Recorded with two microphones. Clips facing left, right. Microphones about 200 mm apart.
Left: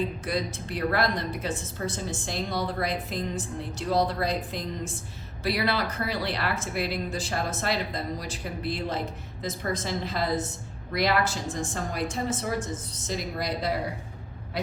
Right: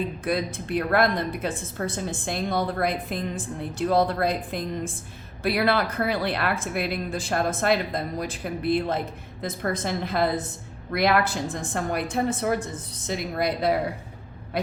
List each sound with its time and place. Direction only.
0.3 s a woman's voice: 55° right (ahead or behind)